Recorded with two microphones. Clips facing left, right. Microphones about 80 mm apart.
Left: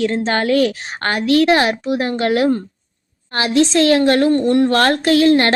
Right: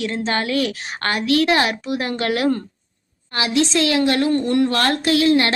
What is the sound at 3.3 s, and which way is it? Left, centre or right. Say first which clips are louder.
Speech: left 4 dB; left.